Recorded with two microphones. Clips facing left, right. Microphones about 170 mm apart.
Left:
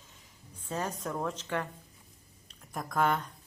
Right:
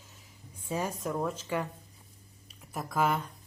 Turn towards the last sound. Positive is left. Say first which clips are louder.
# even
turn(degrees=-5)  # may be behind; listen again after turning